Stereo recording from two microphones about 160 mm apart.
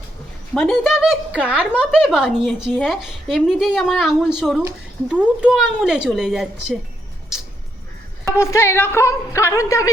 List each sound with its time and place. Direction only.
0.5 s a woman's voice: 5° left (ahead or behind)
8.4 s a woman's voice: 15° left (ahead or behind)